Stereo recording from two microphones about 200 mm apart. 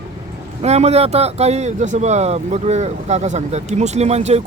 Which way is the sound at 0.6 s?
30° right (ahead or behind).